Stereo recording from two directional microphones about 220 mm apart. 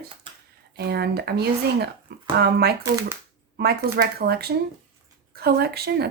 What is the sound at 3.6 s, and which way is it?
Speech, 45° right (ahead or behind).